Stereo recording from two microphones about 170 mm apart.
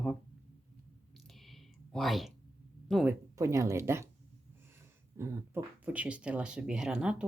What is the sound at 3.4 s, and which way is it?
Speech, 15° right (ahead or behind).